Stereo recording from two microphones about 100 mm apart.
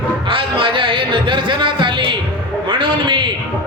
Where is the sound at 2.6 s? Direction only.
55° right (ahead or behind).